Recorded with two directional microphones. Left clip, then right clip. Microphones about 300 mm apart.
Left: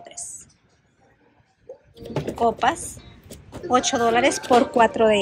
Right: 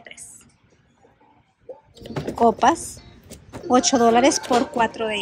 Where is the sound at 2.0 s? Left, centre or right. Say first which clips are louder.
Right 3 dB; centre.